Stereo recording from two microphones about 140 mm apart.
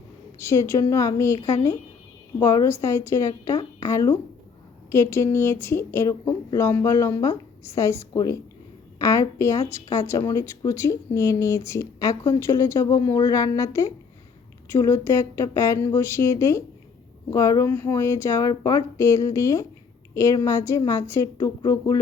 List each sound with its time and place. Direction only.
0.3 s speech: 20° left (ahead or behind)
2.4 s speech: 20° left (ahead or behind)